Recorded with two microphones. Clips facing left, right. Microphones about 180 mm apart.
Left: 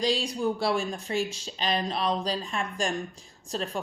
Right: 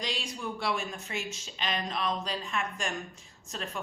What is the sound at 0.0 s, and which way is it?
Speech, 35° left (ahead or behind).